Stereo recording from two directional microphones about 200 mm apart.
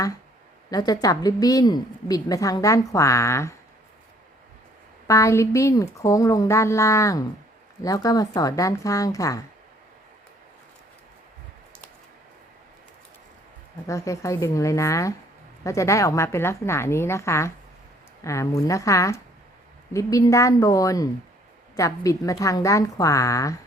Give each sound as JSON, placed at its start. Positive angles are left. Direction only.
{"t": 0.7, "sound": "a woman's voice", "side_deg": 20}
{"t": 5.0, "sound": "a woman's voice", "side_deg": 15}
{"t": 13.8, "sound": "a woman's voice", "side_deg": 15}